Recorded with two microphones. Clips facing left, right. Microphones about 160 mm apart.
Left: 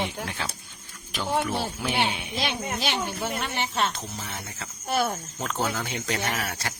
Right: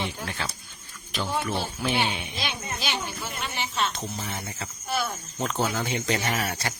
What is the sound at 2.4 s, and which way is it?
Speech, 60° left (ahead or behind).